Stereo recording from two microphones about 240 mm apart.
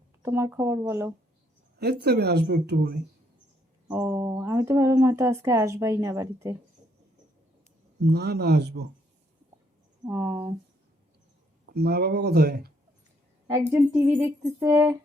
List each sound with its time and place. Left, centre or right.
0.2 s speech: centre
1.8 s speech: right
3.8 s speech: centre
8.1 s speech: right
10.1 s speech: centre
11.7 s speech: right
13.5 s speech: centre